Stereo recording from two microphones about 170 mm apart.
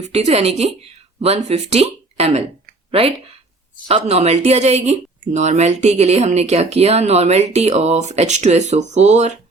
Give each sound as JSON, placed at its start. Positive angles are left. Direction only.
{"t": 0.0, "sound": "speech", "side_deg": -40}
{"t": 3.8, "sound": "speech", "side_deg": -35}